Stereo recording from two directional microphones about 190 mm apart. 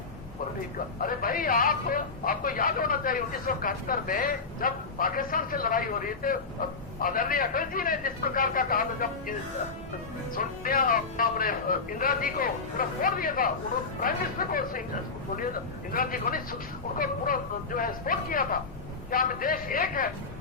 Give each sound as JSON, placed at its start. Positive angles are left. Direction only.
{"t": 1.0, "sound": "speech", "side_deg": 50}
{"t": 10.3, "sound": "speech", "side_deg": 50}
{"t": 15.9, "sound": "speech", "side_deg": 50}